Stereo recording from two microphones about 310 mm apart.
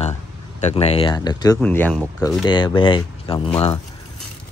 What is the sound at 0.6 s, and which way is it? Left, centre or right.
Speech, left.